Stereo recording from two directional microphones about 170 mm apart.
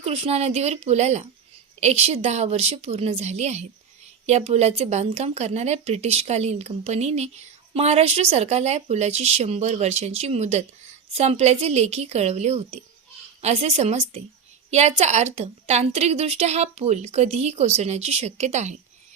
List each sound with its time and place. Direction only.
0.0 s speech: 35° right (ahead or behind)